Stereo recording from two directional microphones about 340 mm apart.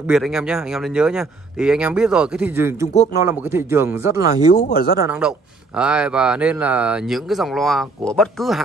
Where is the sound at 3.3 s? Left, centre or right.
Centre.